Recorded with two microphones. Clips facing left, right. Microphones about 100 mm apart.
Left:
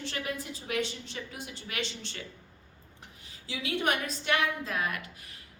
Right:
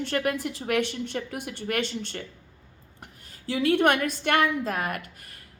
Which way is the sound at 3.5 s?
55° right (ahead or behind).